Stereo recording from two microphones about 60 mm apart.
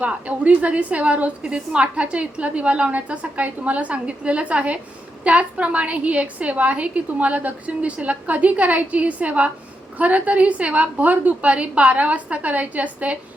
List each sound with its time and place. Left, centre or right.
0.0 s a woman's voice: right